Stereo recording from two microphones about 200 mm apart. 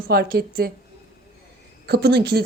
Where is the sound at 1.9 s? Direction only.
50° right (ahead or behind).